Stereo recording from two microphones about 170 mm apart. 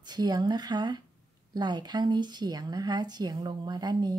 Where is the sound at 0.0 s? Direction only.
25° right (ahead or behind).